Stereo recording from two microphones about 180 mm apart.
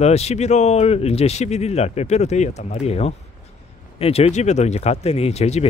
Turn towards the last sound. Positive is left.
turn(degrees=35)  # may be behind; listen again after turning